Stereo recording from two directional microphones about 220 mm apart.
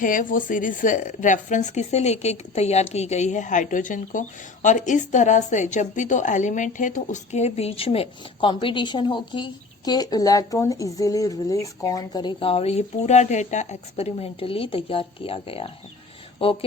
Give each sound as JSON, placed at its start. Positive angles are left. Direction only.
{"t": 0.0, "sound": "a woman's voice", "side_deg": 35}